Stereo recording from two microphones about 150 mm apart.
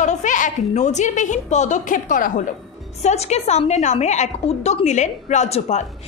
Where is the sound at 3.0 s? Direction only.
45° left (ahead or behind).